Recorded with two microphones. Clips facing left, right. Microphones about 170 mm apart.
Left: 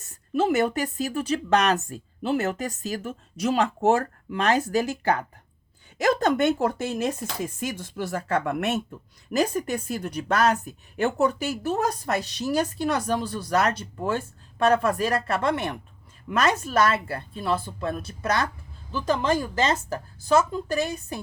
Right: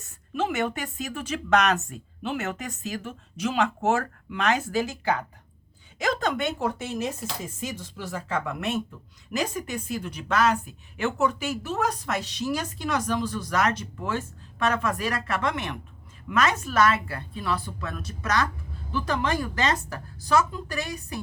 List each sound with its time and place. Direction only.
0.3 s a woman's voice: 40° left (ahead or behind)
6.1 s speech: 40° left (ahead or behind)
9.3 s a woman's voice: 35° left (ahead or behind)
19.0 s a woman's voice: 25° left (ahead or behind)